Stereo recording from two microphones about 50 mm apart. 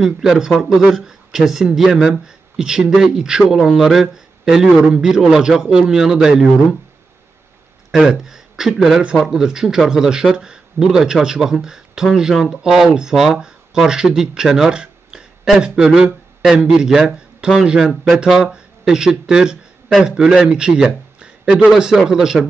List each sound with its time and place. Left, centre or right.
0.0 s a man's voice: centre
3.4 s a man's voice: centre
7.9 s a man's voice: centre